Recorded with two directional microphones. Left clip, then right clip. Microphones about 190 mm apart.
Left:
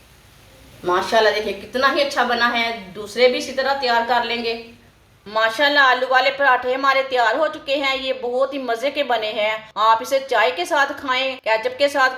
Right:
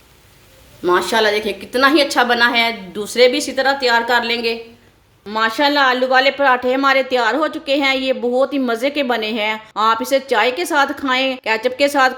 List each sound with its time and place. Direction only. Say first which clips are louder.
0.9 s a woman's voice: right 2 dB; 55° right (ahead or behind)